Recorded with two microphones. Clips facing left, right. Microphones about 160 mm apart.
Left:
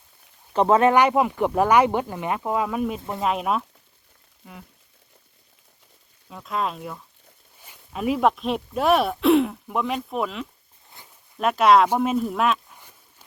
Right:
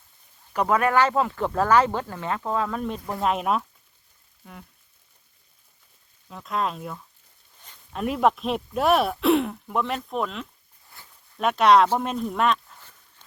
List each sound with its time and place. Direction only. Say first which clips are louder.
0.5 s speech: left 4 dB; 25° left (ahead or behind); by 3.6 s centre (ahead or behind)
6.2 s speech: even; centre (ahead or behind)
11.0 s zipper: left 1 dB; 20° left (ahead or behind)
11.3 s speech: left 1 dB; centre (ahead or behind)
11.9 s a sound: left 4 dB; 5° left (ahead or behind)